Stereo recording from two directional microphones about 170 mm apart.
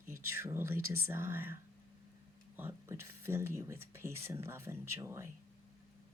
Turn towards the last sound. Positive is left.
turn(degrees=-15)  # may be behind; listen again after turning